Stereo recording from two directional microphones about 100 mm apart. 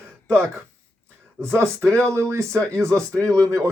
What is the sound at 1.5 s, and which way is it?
Speech, 25° right (ahead or behind).